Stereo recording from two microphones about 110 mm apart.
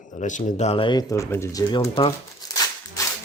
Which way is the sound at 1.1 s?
25° left (ahead or behind).